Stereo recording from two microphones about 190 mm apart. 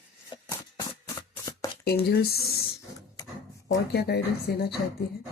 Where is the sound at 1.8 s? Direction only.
55° left (ahead or behind).